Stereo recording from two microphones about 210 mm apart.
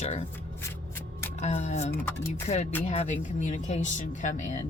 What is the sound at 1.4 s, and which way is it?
Speech, 35° left (ahead or behind).